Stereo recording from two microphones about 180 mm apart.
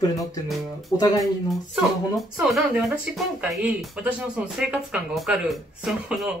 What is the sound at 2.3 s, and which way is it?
Speech, 5° right (ahead or behind).